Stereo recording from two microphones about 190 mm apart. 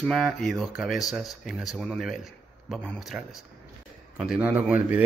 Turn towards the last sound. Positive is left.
turn(degrees=-5)  # may be behind; listen again after turning